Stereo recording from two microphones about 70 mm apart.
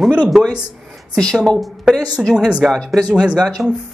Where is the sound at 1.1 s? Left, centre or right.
Centre.